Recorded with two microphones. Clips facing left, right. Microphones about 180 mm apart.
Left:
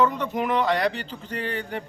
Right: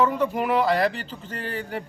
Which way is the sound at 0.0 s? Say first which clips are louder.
Right 1 dB; 10° right (ahead or behind).